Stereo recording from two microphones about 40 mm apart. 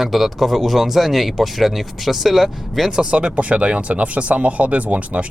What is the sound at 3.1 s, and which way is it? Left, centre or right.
Speech, right.